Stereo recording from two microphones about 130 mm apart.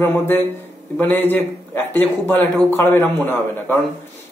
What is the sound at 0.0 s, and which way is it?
A man's voice, 15° left (ahead or behind).